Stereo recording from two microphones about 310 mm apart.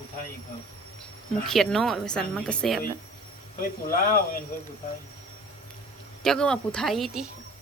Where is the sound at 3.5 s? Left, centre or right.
Left.